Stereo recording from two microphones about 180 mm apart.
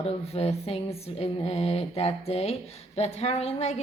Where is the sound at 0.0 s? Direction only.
35° left (ahead or behind).